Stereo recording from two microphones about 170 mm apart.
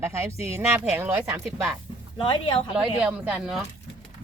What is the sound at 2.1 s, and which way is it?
Speech, 30° left (ahead or behind).